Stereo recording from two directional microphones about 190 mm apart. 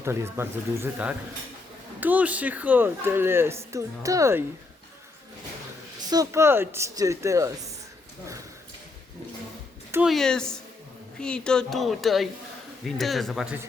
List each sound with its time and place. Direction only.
0.0 s speech: 15° right (ahead or behind)
6.1 s speech: 15° right (ahead or behind)
9.9 s speech: 5° right (ahead or behind)